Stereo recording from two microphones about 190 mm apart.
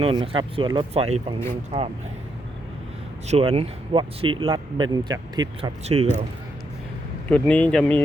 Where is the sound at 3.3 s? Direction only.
30° right (ahead or behind).